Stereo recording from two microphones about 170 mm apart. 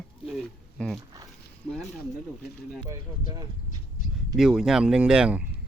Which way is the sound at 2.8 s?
20° right (ahead or behind).